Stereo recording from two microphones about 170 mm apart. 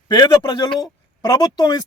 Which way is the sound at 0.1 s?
25° left (ahead or behind).